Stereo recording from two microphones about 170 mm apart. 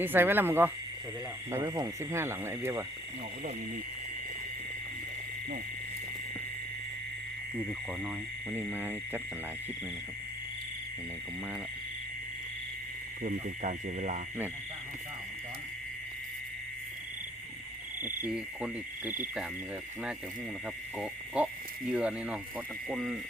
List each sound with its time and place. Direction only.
0.0 s speech: 10° right (ahead or behind)
7.7 s speech: 5° right (ahead or behind)
13.2 s speech: 45° right (ahead or behind)
18.0 s speech: 10° right (ahead or behind)
21.0 s frog: 10° right (ahead or behind)
21.9 s speech: 5° right (ahead or behind)